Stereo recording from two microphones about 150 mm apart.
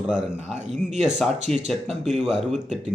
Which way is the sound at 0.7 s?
5° right (ahead or behind).